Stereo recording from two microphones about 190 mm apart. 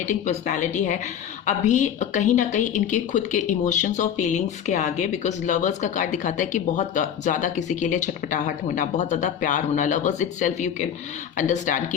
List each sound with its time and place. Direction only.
0.0 s a woman's voice: 40° left (ahead or behind)